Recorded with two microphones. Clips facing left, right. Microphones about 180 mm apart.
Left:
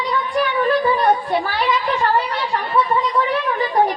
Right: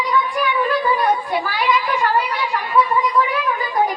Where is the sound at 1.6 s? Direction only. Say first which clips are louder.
Even; 30° left (ahead or behind).